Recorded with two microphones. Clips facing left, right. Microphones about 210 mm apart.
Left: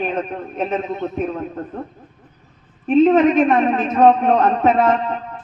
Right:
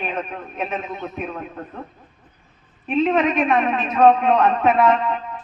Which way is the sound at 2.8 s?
35° left (ahead or behind).